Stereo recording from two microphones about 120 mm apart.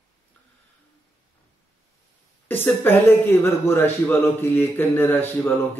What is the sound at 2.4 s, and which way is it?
A man's voice, 15° left (ahead or behind).